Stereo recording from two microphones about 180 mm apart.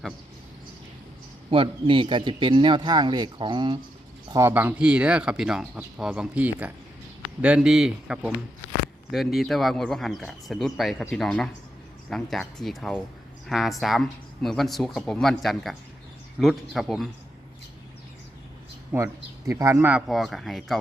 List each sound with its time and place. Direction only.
1.5 s speech: 30° right (ahead or behind)
4.3 s speech: 15° right (ahead or behind); by 17.1 s centre (ahead or behind)
18.9 s speech: 15° right (ahead or behind)
20.1 s speech: centre (ahead or behind)